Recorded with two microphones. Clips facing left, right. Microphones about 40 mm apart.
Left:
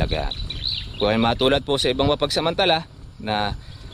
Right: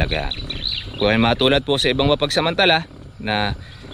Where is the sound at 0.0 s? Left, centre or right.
Right.